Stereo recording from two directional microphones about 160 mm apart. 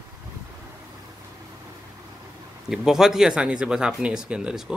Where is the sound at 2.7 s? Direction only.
Centre (ahead or behind).